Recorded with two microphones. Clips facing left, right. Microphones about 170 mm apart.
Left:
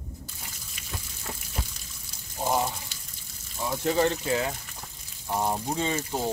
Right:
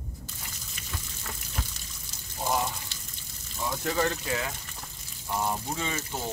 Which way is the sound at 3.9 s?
30° left (ahead or behind).